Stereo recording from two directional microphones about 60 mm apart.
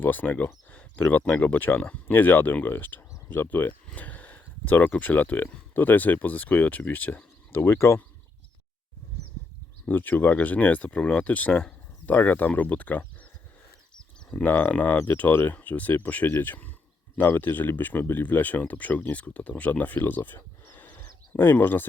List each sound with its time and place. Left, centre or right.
0.0 s speech: left
7.6 s speech: left
9.9 s speech: left
14.3 s speech: left